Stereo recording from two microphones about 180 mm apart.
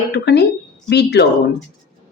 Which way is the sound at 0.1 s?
70° left (ahead or behind).